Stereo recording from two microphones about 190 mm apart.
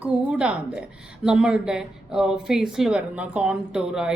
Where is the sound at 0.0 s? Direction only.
5° right (ahead or behind).